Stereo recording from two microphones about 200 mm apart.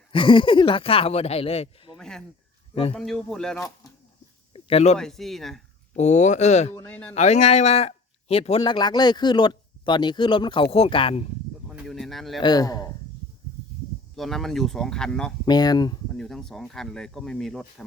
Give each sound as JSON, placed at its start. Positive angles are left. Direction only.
{"t": 0.1, "sound": "speech", "side_deg": 25}
{"t": 2.0, "sound": "speech", "side_deg": 5}
{"t": 4.5, "sound": "a sound", "side_deg": 30}
{"t": 4.9, "sound": "speech", "side_deg": 0}
{"t": 6.0, "sound": "speech", "side_deg": 35}
{"t": 6.7, "sound": "speech", "side_deg": 10}
{"t": 7.1, "sound": "speech", "side_deg": 35}
{"t": 11.7, "sound": "speech", "side_deg": 0}
{"t": 12.4, "sound": "speech", "side_deg": 20}
{"t": 14.2, "sound": "speech", "side_deg": 0}
{"t": 15.4, "sound": "speech", "side_deg": 20}
{"t": 16.1, "sound": "speech", "side_deg": 0}